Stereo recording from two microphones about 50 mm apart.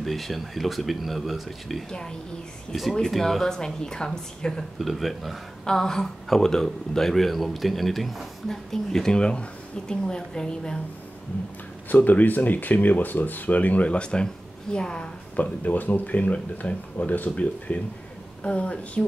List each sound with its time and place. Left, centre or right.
0.0 s speech: centre
1.9 s speech: centre
2.7 s speech: centre
4.7 s speech: centre
5.7 s speech: centre
8.5 s speech: centre
11.9 s speech: left; by 15.0 s centre
15.4 s a woman's voice: left